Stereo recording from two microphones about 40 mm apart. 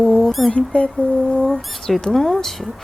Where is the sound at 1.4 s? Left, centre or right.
Centre.